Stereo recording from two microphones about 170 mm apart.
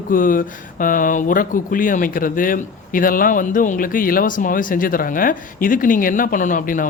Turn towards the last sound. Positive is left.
turn(degrees=50)  # may be behind; listen again after turning